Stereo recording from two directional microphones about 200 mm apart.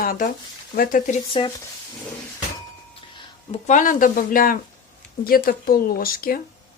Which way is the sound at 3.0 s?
30° left (ahead or behind).